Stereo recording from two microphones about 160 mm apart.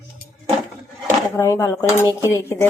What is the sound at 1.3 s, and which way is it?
Speech, 15° left (ahead or behind).